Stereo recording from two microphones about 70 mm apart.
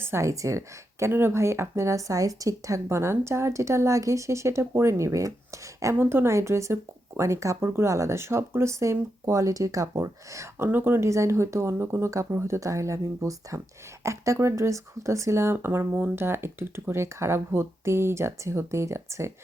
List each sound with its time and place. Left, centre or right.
0.0 s a woman's voice: right
5.9 s speech: right
10.7 s speech: right
11.1 s speech: right